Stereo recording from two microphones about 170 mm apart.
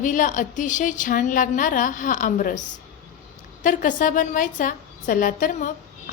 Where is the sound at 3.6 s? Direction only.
50° left (ahead or behind).